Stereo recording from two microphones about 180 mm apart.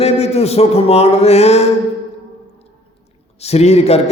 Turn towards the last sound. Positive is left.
turn(degrees=35)  # may be behind; listen again after turning